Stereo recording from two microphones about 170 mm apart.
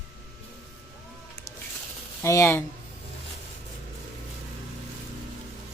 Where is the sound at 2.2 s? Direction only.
15° left (ahead or behind).